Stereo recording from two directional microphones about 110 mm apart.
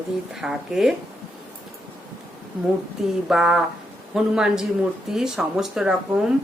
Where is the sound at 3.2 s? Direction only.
5° right (ahead or behind).